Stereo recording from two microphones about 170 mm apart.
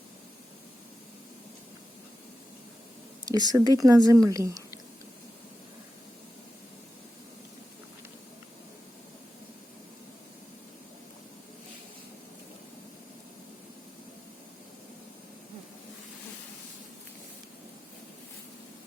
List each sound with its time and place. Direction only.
3.2 s speech: 25° right (ahead or behind)